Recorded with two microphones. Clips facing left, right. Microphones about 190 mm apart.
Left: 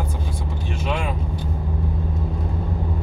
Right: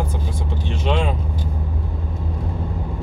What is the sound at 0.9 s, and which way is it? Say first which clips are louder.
Speech: right 5 dB; 25° right (ahead or behind).